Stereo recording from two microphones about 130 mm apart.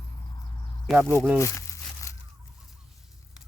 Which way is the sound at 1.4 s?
20° left (ahead or behind).